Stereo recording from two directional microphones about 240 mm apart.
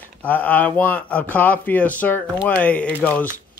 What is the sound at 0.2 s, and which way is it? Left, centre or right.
Speech, centre.